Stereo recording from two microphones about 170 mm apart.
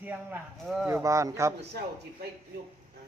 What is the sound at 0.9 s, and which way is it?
Speech, 15° right (ahead or behind).